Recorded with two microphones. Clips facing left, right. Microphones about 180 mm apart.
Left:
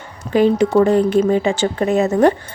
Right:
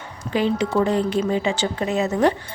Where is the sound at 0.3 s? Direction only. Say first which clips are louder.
Left 7 dB; 50° left (ahead or behind).